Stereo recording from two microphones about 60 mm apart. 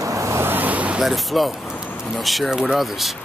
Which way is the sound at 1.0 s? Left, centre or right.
Centre.